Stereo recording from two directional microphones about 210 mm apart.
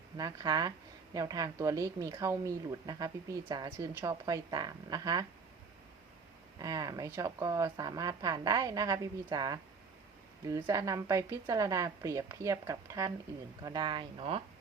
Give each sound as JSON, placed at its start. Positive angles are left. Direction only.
{"t": 0.2, "sound": "a woman's voice", "side_deg": -15}
{"t": 6.6, "sound": "a woman's voice", "side_deg": -20}